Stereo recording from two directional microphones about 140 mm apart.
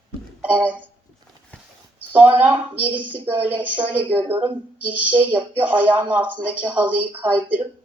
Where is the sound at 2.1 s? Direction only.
10° right (ahead or behind).